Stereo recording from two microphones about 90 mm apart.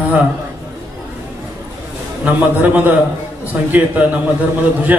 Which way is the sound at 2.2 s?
15° right (ahead or behind).